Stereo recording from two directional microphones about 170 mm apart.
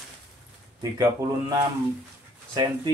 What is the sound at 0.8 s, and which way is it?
Speech, 20° right (ahead or behind).